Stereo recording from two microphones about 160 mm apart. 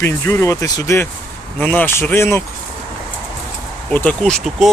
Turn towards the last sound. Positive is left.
turn(degrees=0)  # may be behind; listen again after turning